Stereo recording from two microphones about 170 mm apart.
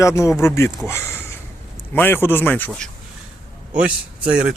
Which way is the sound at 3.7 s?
5° right (ahead or behind).